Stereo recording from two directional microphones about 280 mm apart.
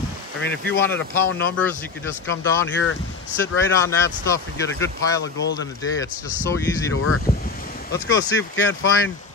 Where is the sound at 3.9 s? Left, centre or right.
Centre.